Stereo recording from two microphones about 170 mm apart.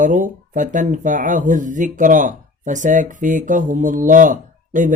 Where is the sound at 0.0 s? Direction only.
50° right (ahead or behind).